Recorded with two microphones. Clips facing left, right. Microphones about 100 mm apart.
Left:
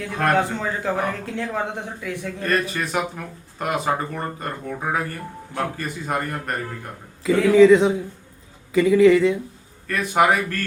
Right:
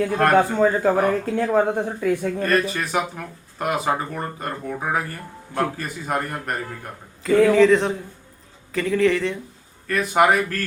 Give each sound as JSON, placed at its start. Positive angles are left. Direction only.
{"t": 0.5, "sound": "speech", "side_deg": -45}
{"t": 2.4, "sound": "speech", "side_deg": 0}